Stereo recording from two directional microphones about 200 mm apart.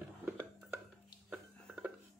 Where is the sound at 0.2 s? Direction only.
10° right (ahead or behind).